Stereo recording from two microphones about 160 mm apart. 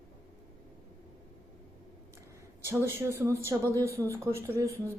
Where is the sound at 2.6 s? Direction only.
15° right (ahead or behind).